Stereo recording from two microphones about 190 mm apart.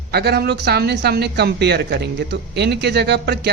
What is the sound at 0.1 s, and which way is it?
Speech, 55° right (ahead or behind).